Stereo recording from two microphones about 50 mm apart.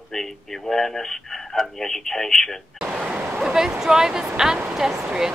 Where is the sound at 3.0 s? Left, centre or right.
Right.